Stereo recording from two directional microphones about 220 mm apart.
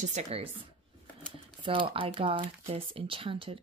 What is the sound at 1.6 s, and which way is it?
Speech, 25° right (ahead or behind).